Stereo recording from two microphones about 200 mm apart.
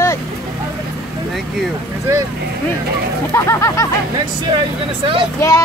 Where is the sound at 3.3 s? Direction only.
15° left (ahead or behind).